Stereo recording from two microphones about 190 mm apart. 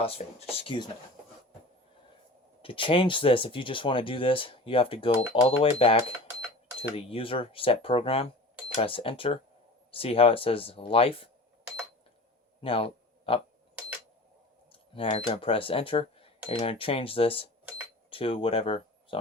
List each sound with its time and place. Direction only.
0.0 s speech: 30° left (ahead or behind)
2.6 s speech: 25° left (ahead or behind)
12.6 s a sound: 30° left (ahead or behind)
14.7 s speech: 30° left (ahead or behind)